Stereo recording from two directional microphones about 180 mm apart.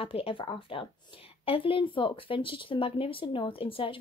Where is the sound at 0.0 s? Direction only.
30° left (ahead or behind).